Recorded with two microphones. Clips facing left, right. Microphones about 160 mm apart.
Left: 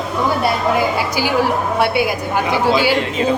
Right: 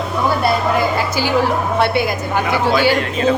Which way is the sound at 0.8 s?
10° left (ahead or behind).